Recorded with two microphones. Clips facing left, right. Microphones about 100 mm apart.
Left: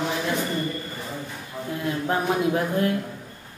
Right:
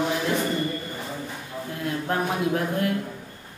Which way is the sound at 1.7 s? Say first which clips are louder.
Left 2 dB; centre (ahead or behind).